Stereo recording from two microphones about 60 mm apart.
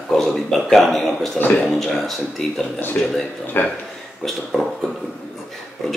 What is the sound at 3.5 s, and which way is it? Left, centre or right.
Speech, left.